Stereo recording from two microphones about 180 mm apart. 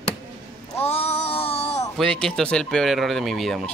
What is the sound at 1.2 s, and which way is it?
Music, 30° left (ahead or behind).